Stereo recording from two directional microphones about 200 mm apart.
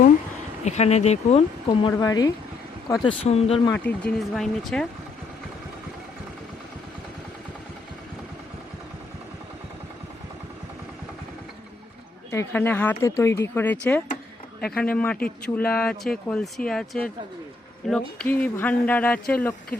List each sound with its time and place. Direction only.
0.6 s speech: 35° left (ahead or behind)
1.9 s speech: 20° left (ahead or behind)
3.7 s speech: 5° left (ahead or behind)
12.3 s speech: 10° left (ahead or behind)